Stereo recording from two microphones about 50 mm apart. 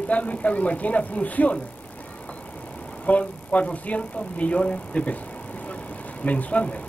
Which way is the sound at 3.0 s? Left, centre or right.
Left.